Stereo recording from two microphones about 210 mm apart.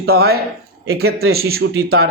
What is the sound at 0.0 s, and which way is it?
A man's voice, 50° right (ahead or behind).